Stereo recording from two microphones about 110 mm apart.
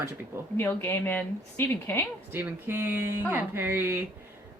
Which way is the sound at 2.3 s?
20° right (ahead or behind).